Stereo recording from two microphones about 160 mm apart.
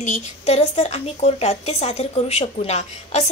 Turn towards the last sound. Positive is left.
turn(degrees=40)  # may be behind; listen again after turning